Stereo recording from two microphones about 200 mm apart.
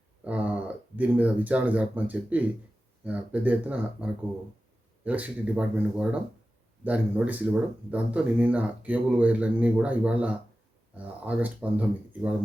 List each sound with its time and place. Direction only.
0.3 s speech: 5° right (ahead or behind)